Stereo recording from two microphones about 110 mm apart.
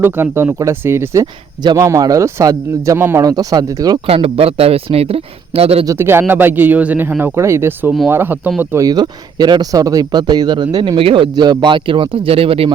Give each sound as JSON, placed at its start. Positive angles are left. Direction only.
{"t": 0.0, "sound": "speech", "side_deg": -20}
{"t": 3.2, "sound": "speech", "side_deg": -35}
{"t": 4.0, "sound": "speech", "side_deg": -60}
{"t": 5.8, "sound": "speech", "side_deg": -25}
{"t": 7.3, "sound": "speech", "side_deg": -25}
{"t": 8.8, "sound": "speech", "side_deg": -35}